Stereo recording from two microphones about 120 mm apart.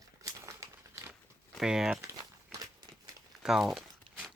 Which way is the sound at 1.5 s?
5° right (ahead or behind).